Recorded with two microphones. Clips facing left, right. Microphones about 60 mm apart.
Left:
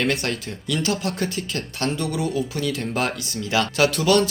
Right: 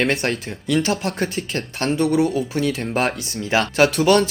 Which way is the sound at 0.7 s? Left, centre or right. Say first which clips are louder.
Right 4 dB; right.